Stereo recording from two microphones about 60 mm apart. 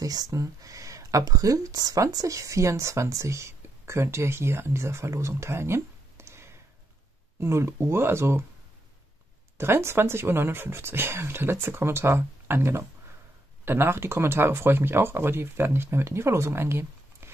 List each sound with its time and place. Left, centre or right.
0.0 s speech: right
9.6 s speech: right